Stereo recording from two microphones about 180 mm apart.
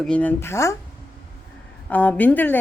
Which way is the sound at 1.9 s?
10° left (ahead or behind).